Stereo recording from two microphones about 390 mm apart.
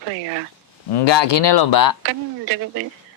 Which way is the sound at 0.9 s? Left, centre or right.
Left.